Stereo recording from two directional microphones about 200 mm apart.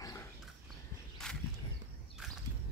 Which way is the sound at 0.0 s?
15° left (ahead or behind).